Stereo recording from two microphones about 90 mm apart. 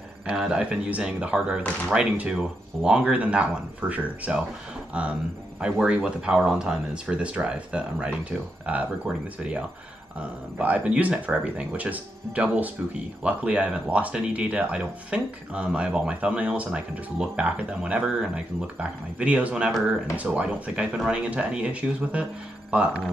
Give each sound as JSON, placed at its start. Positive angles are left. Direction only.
{"t": 0.3, "sound": "speech", "side_deg": -10}
{"t": 10.6, "sound": "speech", "side_deg": -15}